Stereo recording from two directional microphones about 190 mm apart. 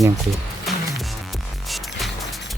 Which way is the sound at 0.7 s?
Centre (ahead or behind).